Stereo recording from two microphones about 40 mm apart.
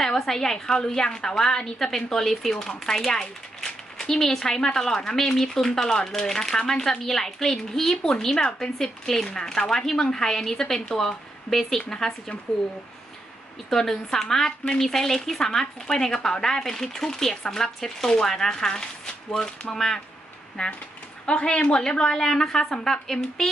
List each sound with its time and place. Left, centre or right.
0.0 s speech: centre
13.7 s a woman's voice: centre